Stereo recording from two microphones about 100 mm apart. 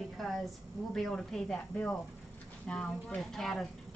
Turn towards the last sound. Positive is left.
turn(degrees=5)  # may be behind; listen again after turning